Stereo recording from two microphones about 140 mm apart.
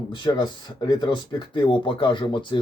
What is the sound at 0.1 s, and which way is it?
Speech, 35° left (ahead or behind).